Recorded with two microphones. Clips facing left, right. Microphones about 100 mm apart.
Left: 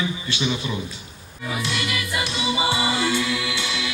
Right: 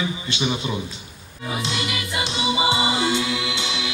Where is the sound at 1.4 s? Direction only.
25° right (ahead or behind).